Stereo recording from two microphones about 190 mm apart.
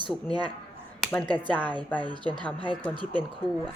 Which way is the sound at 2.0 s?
25° right (ahead or behind).